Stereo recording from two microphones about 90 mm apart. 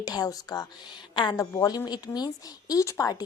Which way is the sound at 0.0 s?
45° left (ahead or behind).